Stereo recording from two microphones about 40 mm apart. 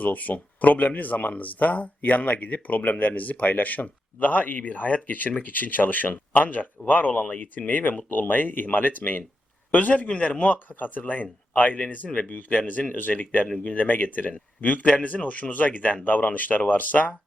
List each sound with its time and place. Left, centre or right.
0.0 s a man's voice: left